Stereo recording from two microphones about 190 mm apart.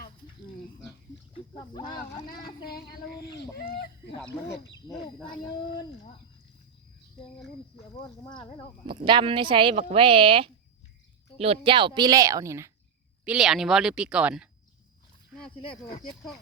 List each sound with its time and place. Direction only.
2.2 s speech: 50° left (ahead or behind)
4.9 s speech: 25° left (ahead or behind)
8.9 s speech: 25° right (ahead or behind)
13.2 s speech: 5° right (ahead or behind)